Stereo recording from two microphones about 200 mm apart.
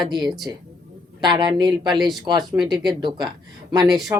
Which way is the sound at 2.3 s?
20° right (ahead or behind).